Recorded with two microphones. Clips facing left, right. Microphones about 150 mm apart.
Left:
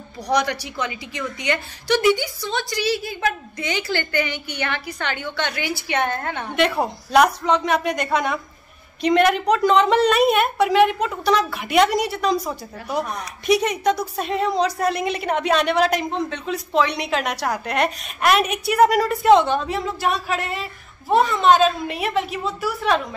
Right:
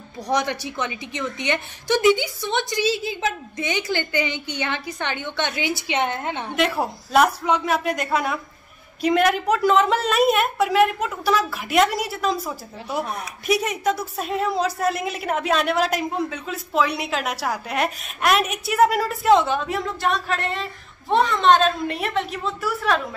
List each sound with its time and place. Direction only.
0.3 s a woman's voice: 20° right (ahead or behind)
6.5 s a woman's voice: centre (ahead or behind)